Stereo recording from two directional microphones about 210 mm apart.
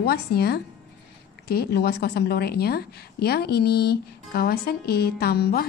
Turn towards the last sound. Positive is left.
turn(degrees=50)  # may be behind; listen again after turning